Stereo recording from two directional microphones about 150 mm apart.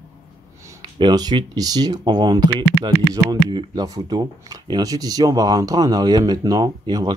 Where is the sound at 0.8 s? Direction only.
30° right (ahead or behind).